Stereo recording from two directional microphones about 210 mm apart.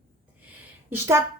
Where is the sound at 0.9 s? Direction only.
10° right (ahead or behind).